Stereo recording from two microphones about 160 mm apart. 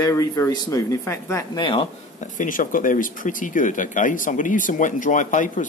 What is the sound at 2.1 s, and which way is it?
Speech, 55° left (ahead or behind).